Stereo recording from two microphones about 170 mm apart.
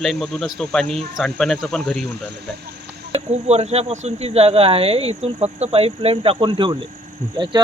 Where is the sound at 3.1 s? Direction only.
40° right (ahead or behind).